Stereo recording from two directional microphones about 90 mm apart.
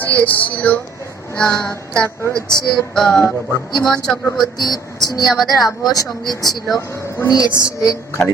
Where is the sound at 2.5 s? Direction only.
10° left (ahead or behind).